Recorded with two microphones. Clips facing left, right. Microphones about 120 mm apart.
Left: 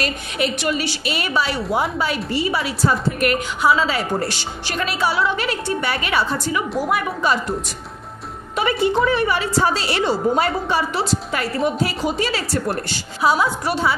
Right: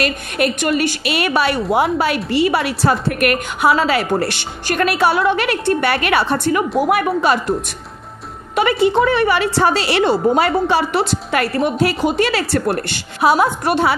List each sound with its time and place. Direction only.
0.0 s a woman's voice: 55° right (ahead or behind)
8.5 s a woman's voice: 85° right; by 13.9 s 60° right (ahead or behind)